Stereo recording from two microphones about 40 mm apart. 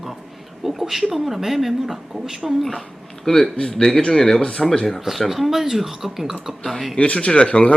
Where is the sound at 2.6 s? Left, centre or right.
Centre; by 4.6 s left.